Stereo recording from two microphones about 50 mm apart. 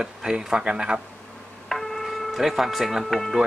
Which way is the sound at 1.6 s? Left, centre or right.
Centre.